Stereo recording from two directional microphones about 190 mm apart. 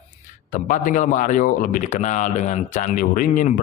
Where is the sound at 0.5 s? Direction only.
45° left (ahead or behind).